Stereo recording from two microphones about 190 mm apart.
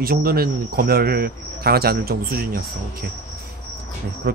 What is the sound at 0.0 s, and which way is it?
Speech, 50° right (ahead or behind).